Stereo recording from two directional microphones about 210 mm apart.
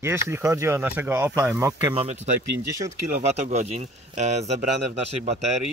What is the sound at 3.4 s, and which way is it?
Speech, 30° right (ahead or behind).